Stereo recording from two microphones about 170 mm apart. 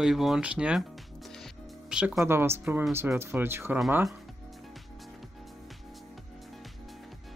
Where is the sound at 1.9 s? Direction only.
5° right (ahead or behind).